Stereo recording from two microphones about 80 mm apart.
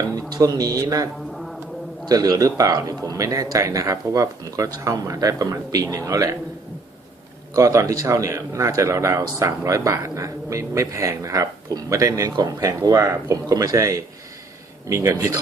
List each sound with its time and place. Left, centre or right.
0.1 s speech: right
1.3 s a sound: centre
2.0 s speech: right
7.5 s speech: right
13.5 s speech: right